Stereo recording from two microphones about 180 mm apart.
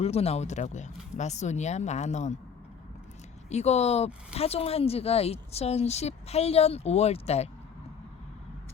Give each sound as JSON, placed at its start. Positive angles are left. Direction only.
{"t": 0.0, "sound": "speech", "side_deg": 35}
{"t": 3.5, "sound": "speech", "side_deg": 35}